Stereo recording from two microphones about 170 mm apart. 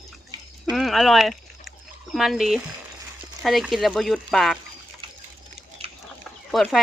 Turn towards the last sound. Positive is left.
turn(degrees=0)  # may be behind; listen again after turning